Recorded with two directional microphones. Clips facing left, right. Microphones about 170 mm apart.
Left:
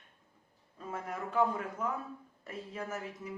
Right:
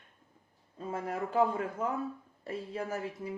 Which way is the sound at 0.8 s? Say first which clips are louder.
Right 4 dB; 30° right (ahead or behind).